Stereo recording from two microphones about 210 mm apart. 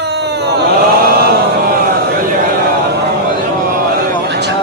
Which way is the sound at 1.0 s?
45° right (ahead or behind).